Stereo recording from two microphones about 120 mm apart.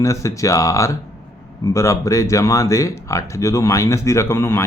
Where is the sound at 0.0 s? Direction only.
25° left (ahead or behind).